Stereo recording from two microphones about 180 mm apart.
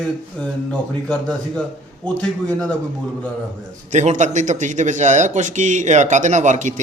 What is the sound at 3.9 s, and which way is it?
A man's voice, 40° right (ahead or behind).